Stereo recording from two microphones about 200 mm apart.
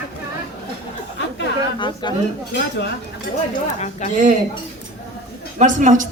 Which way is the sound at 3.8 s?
35° left (ahead or behind).